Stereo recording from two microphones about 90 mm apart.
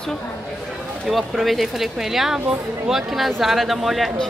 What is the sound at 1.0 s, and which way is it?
A woman's voice, centre (ahead or behind).